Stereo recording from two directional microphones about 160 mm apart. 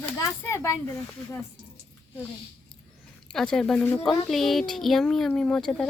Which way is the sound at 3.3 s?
5° left (ahead or behind).